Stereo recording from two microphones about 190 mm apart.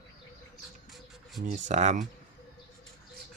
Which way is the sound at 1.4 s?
40° right (ahead or behind).